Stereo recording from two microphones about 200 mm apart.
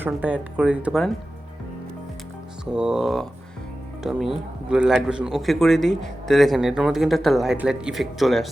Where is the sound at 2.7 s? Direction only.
5° right (ahead or behind).